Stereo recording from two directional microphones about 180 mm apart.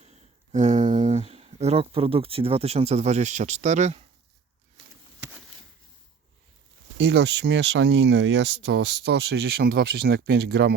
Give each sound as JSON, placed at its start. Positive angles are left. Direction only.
{"t": 0.0, "sound": "speech", "side_deg": -40}
{"t": 7.0, "sound": "speech", "side_deg": -75}